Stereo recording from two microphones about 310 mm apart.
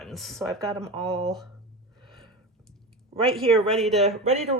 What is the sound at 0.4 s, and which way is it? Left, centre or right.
Speech, centre.